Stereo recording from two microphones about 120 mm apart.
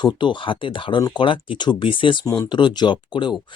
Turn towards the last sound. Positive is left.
turn(degrees=40)  # may be behind; listen again after turning